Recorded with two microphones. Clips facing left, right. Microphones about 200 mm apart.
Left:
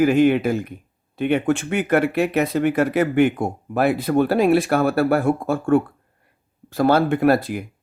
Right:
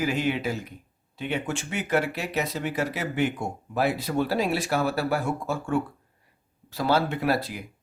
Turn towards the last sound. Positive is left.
turn(degrees=50)  # may be behind; listen again after turning